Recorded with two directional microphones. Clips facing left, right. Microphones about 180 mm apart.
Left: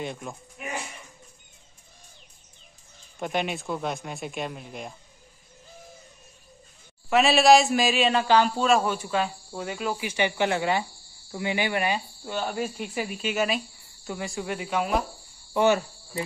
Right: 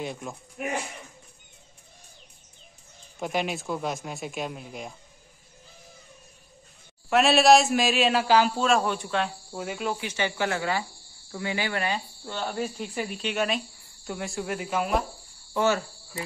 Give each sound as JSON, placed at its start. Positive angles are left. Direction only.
{"t": 0.0, "sound": "speech", "side_deg": 0}
{"t": 0.6, "sound": "speech", "side_deg": -55}
{"t": 3.2, "sound": "speech", "side_deg": 0}
{"t": 7.1, "sound": "speech", "side_deg": 0}
{"t": 10.0, "sound": "speech", "side_deg": 15}
{"t": 15.5, "sound": "cricket", "side_deg": 20}